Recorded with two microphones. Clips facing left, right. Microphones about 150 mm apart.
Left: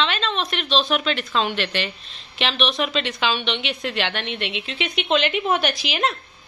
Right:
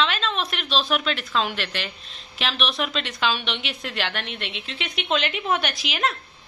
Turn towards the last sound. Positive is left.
turn(degrees=0)  # may be behind; listen again after turning